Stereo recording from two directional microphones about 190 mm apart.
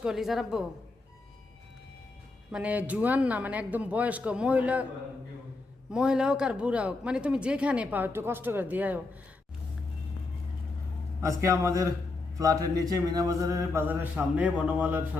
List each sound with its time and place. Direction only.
0.0 s a woman's voice: centre (ahead or behind)
2.5 s speech: 5° right (ahead or behind)
5.9 s speech: 5° right (ahead or behind)
11.2 s speech: 15° right (ahead or behind)